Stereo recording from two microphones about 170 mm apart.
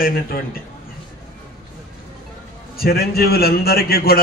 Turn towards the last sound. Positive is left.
turn(degrees=65)  # may be behind; listen again after turning